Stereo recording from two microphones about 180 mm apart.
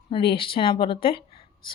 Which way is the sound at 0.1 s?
30° left (ahead or behind).